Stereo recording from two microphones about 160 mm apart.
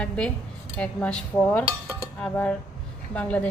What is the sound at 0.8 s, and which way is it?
Cutlery, 10° left (ahead or behind).